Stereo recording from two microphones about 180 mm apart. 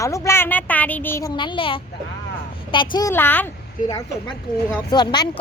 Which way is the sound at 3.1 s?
10° left (ahead or behind).